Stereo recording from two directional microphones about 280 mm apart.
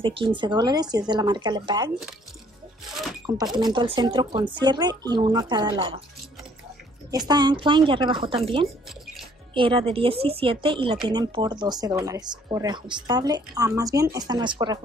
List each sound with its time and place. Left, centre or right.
0.0 s speech: centre
2.9 s a sound: centre
3.5 s speech: centre
7.1 s speech: centre